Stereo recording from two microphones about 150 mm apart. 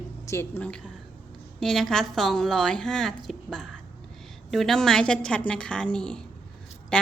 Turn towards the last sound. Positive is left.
turn(degrees=5)  # may be behind; listen again after turning